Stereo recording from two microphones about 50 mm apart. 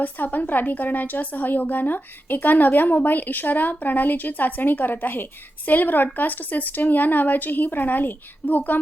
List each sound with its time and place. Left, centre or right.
0.0 s a woman's voice: left